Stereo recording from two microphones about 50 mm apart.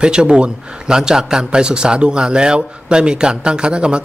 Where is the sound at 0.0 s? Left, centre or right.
Centre.